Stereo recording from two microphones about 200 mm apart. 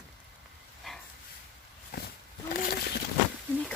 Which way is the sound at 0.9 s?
Centre (ahead or behind).